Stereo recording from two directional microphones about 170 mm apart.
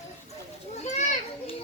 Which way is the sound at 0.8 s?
45° left (ahead or behind).